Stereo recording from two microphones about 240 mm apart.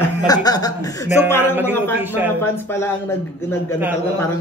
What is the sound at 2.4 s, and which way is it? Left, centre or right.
Speech, centre.